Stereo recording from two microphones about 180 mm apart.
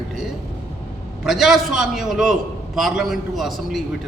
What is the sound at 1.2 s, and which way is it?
A man's voice, centre (ahead or behind).